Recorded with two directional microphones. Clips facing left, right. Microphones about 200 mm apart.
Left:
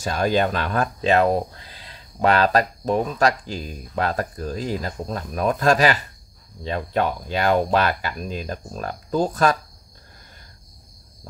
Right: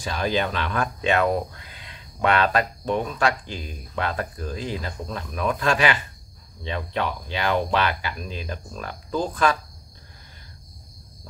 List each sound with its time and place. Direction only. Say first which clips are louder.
0.0 s speech: left 4 dB; 45° left (ahead or behind)